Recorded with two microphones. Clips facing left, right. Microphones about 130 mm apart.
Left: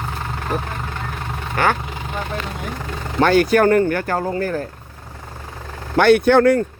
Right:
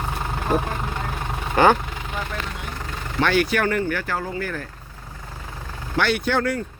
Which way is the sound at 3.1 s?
40° left (ahead or behind).